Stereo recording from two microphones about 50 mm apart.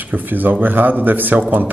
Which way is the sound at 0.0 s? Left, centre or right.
Right.